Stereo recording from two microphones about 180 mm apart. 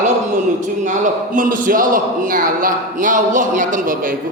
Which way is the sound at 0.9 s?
45° right (ahead or behind).